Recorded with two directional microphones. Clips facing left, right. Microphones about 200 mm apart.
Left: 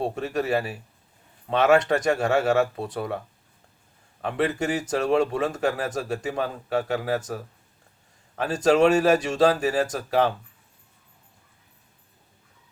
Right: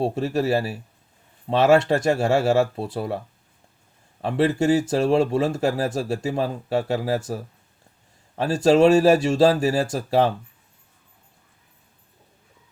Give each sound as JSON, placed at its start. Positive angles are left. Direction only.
{"t": 0.0, "sound": "a man's voice", "side_deg": -30}
{"t": 4.2, "sound": "a man's voice", "side_deg": -30}
{"t": 8.4, "sound": "speech", "side_deg": -30}